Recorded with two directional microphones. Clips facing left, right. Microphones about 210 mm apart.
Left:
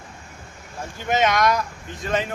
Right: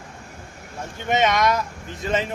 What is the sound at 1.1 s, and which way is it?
Speech, centre (ahead or behind).